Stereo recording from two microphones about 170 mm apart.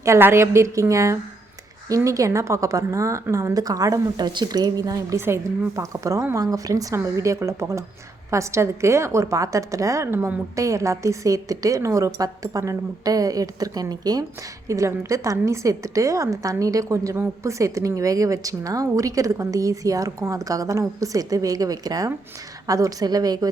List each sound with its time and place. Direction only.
0.0 s a woman's voice: 15° right (ahead or behind)